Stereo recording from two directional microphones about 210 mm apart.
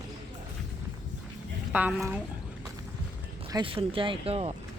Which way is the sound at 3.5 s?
20° right (ahead or behind).